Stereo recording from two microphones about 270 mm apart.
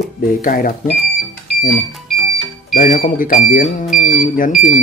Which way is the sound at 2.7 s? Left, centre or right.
Left.